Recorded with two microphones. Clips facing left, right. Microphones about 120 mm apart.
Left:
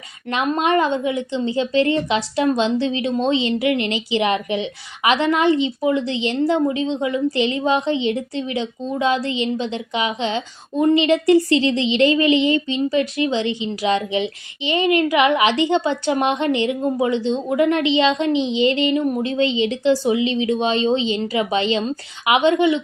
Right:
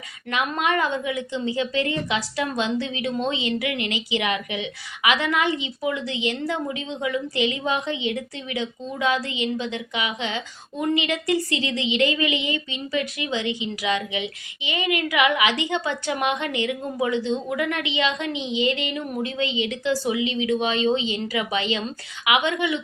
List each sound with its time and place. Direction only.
0.3 s a woman's voice: 30° left (ahead or behind)